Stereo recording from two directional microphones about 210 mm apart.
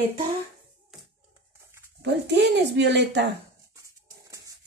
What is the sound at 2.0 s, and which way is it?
Speech, 55° right (ahead or behind).